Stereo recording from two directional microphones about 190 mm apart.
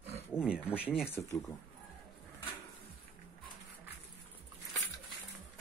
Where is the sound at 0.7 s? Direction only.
5° right (ahead or behind).